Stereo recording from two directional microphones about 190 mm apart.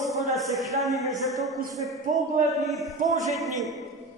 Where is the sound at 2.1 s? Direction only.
40° right (ahead or behind).